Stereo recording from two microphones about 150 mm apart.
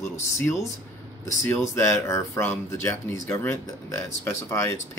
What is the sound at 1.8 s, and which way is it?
Speech, 15° left (ahead or behind).